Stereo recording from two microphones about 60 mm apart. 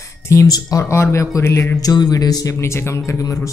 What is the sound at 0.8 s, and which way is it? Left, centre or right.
Speech, left.